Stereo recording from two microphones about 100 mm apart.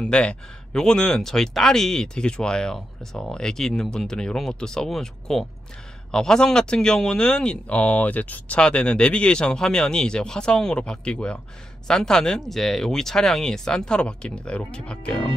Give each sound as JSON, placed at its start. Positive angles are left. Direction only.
{"t": 0.0, "sound": "speech", "side_deg": 10}